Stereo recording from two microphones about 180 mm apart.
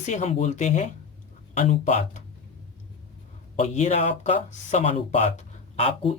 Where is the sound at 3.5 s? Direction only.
40° left (ahead or behind).